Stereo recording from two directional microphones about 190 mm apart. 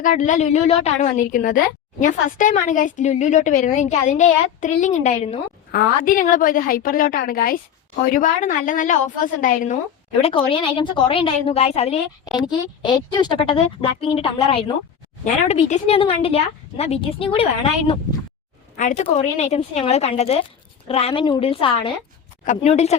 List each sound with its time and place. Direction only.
0.0 s a woman's voice: 45° left (ahead or behind)
5.7 s a woman's voice: 45° left (ahead or behind)
10.2 s speech: 30° left (ahead or behind)
12.4 s a woman's voice: 20° left (ahead or behind)